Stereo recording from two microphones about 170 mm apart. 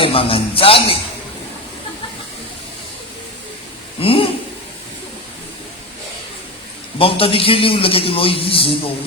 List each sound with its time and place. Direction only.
0.0 s a man's voice: 35° left (ahead or behind)
4.0 s a man's voice: 30° left (ahead or behind)
7.0 s a man's voice: 35° left (ahead or behind)